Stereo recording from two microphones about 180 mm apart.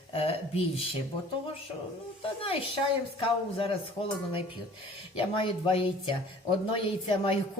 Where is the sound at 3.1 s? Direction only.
30° left (ahead or behind).